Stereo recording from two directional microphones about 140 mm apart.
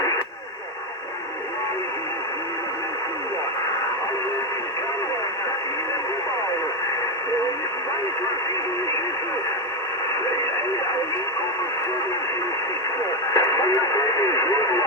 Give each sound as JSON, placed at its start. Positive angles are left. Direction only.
{"t": 13.3, "sound": "radio", "side_deg": 25}